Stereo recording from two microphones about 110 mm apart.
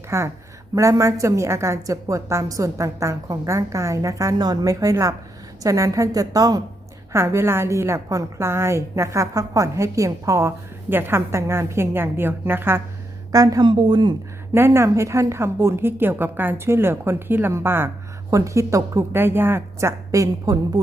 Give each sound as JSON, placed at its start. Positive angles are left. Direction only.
{"t": 0.1, "sound": "a woman's voice", "side_deg": -25}
{"t": 13.3, "sound": "a woman's voice", "side_deg": -30}
{"t": 13.7, "sound": "speech", "side_deg": -40}
{"t": 14.5, "sound": "a woman's voice", "side_deg": -25}